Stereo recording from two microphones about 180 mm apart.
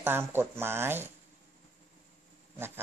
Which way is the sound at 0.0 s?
10° right (ahead or behind).